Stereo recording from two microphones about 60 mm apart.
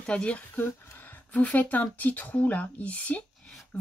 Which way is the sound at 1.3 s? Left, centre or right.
Left.